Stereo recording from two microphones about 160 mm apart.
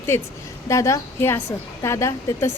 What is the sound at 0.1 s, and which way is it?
A woman's voice, 15° left (ahead or behind).